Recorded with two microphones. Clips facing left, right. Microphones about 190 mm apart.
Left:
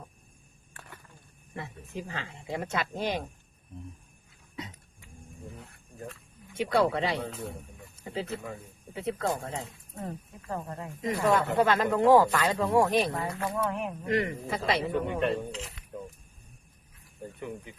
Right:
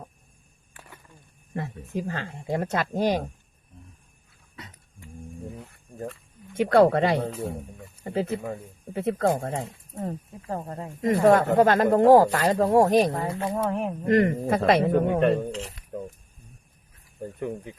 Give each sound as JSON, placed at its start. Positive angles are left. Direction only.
{"t": 1.5, "sound": "speech", "side_deg": -45}
{"t": 6.5, "sound": "speech", "side_deg": -50}
{"t": 10.1, "sound": "speech", "side_deg": -30}
{"t": 11.0, "sound": "speech", "side_deg": -50}
{"t": 13.2, "sound": "speech", "side_deg": -25}
{"t": 14.0, "sound": "speech", "side_deg": -50}